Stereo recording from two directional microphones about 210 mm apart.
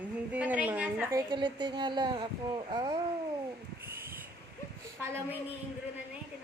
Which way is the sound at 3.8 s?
10° right (ahead or behind).